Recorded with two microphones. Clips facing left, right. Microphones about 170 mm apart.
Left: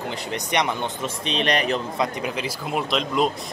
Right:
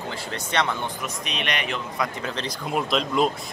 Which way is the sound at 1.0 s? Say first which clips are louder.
Left 6 dB; 30° left (ahead or behind).